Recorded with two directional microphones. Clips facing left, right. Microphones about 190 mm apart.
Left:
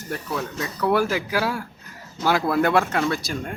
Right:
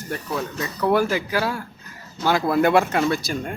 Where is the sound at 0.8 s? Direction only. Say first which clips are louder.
Right 1 dB; 5° left (ahead or behind).